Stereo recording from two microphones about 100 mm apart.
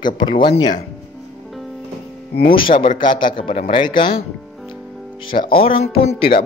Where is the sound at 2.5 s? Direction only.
60° left (ahead or behind).